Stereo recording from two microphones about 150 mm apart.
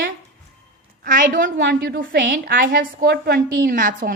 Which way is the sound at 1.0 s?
65° right (ahead or behind).